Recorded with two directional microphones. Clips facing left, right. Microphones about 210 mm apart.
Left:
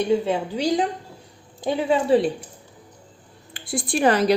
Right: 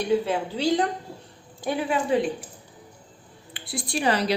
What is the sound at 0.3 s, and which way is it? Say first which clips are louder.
Speech: left 2 dB; 15° left (ahead or behind).